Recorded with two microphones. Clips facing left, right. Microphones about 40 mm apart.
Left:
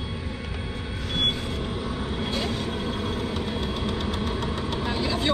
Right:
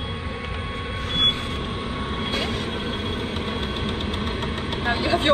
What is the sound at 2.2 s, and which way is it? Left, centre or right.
Vehicle, right.